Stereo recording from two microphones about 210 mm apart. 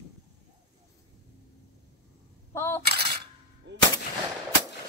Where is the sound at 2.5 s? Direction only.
10° left (ahead or behind).